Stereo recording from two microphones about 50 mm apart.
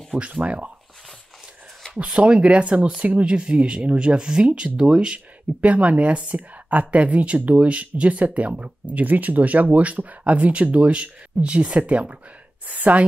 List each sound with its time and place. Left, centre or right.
0.2 s speech: right
2.0 s a woman's voice: right